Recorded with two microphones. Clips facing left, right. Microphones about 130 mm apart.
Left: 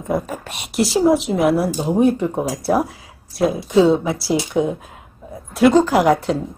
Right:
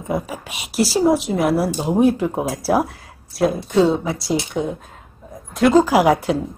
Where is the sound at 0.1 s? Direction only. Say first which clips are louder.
Left 2 dB; centre (ahead or behind).